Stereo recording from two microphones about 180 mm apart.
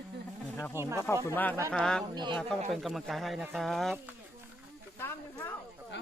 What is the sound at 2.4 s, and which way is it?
Speech, centre (ahead or behind).